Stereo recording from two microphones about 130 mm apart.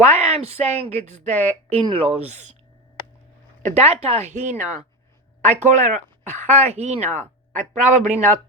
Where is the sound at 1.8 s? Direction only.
45° right (ahead or behind).